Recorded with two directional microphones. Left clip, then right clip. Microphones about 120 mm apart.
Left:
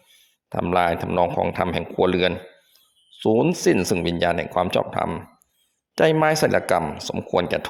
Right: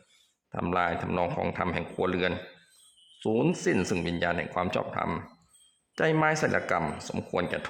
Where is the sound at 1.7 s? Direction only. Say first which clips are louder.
Left 9 dB; 45° left (ahead or behind).